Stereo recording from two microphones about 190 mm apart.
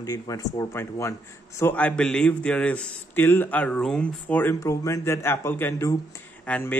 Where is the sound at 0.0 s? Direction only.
20° left (ahead or behind).